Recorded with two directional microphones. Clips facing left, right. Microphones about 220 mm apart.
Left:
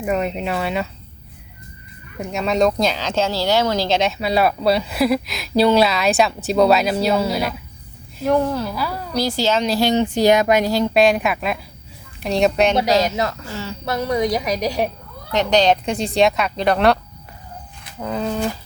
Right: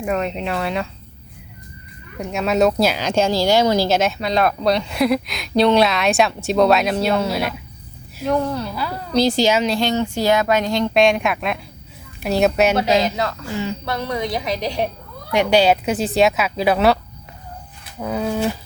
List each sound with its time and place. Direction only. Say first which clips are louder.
0.0 s speech: left 1 dB; 5° left (ahead or behind)
2.1 s speech: right 1 dB; centre (ahead or behind)
9.1 s a woman's voice: right 4 dB; 20° right (ahead or behind)
9.6 s speech: left 1 dB; 5° left (ahead or behind)
9.9 s speech: left 3 dB; 15° left (ahead or behind); by 12.7 s 5° right (ahead or behind)
12.8 s a woman's voice: even; 20° right (ahead or behind)
13.8 s a woman's voice: left 4 dB; 20° left (ahead or behind)
15.3 s speech: right 1 dB; 10° right (ahead or behind)
18.0 s speech: right 1 dB; 5° right (ahead or behind)